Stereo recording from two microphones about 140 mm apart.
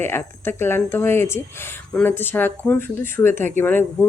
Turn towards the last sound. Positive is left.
turn(degrees=15)  # may be behind; listen again after turning